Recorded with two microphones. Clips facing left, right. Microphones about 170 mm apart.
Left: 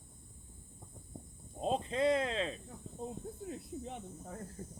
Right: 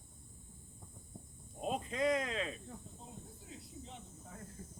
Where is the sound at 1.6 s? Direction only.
30° left (ahead or behind).